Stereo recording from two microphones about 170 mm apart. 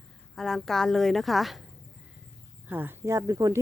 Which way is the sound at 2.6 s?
10° right (ahead or behind).